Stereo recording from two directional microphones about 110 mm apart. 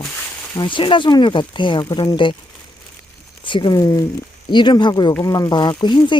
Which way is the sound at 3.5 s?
45° left (ahead or behind).